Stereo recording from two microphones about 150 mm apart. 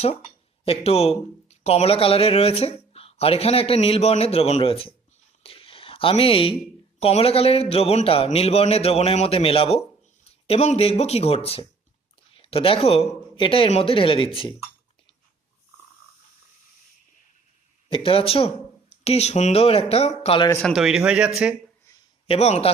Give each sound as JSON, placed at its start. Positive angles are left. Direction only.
{"t": 0.6, "sound": "speech", "side_deg": 40}
{"t": 5.4, "sound": "a sound", "side_deg": 40}
{"t": 7.0, "sound": "speech", "side_deg": 40}
{"t": 17.8, "sound": "speech", "side_deg": 40}
{"t": 20.6, "sound": "speech", "side_deg": 0}
{"t": 22.3, "sound": "speech", "side_deg": 45}